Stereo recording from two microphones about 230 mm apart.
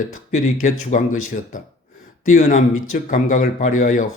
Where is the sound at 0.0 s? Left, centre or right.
Left.